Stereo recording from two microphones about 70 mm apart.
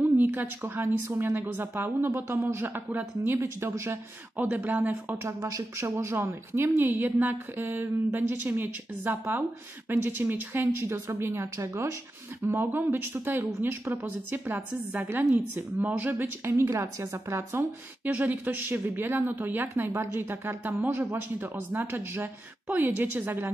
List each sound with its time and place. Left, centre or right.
0.0 s a woman's voice: right
3.3 s speech: right
4.4 s a woman's voice: right
5.2 s speech: right
6.2 s a woman's voice: right
12.4 s speech: right
17.6 s a woman's voice: right